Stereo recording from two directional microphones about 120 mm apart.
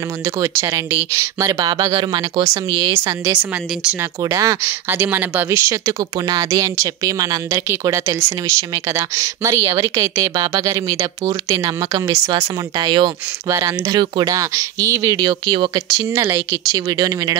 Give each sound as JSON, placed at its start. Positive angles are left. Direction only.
{"t": 0.4, "sound": "speech", "side_deg": -25}
{"t": 2.4, "sound": "speech", "side_deg": -25}
{"t": 16.3, "sound": "speech", "side_deg": -30}